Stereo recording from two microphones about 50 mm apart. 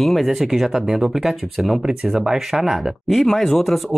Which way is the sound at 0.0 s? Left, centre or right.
Centre.